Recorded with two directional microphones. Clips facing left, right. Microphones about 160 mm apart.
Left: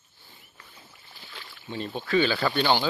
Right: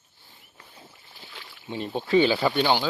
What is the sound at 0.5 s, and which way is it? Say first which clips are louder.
Boat: right 5 dB; 25° right (ahead or behind).